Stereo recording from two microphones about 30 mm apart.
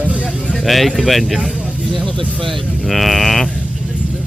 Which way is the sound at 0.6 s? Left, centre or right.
Centre.